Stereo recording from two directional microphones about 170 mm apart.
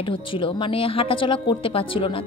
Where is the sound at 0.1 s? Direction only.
30° left (ahead or behind).